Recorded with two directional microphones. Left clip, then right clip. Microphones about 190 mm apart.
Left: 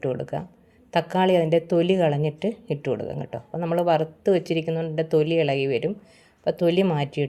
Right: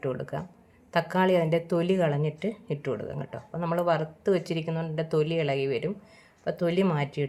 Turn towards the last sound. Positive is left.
turn(degrees=20)  # may be behind; listen again after turning